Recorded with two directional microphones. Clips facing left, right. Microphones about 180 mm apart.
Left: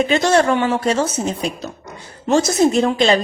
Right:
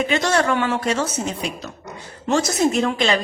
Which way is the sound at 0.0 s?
30° left (ahead or behind).